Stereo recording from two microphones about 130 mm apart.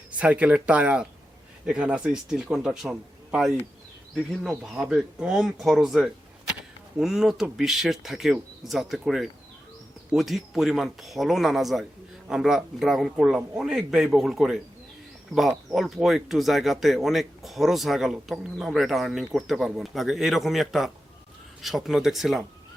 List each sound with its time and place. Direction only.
0.2 s speech: 10° right (ahead or behind)